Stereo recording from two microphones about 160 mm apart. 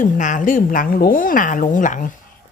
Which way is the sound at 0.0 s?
50° left (ahead or behind).